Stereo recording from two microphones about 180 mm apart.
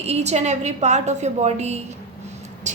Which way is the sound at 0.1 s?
40° right (ahead or behind).